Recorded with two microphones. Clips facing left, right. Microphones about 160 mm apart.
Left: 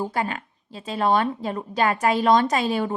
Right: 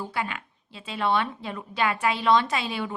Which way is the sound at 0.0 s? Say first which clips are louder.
Left 5 dB; 40° left (ahead or behind).